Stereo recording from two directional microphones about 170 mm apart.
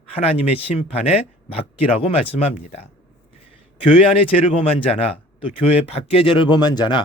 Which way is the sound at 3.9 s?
35° left (ahead or behind).